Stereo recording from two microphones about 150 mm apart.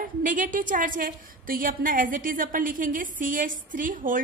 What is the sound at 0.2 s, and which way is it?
A woman's voice, 60° right (ahead or behind).